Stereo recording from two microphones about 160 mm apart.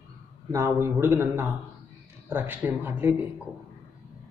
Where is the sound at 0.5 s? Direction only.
15° right (ahead or behind).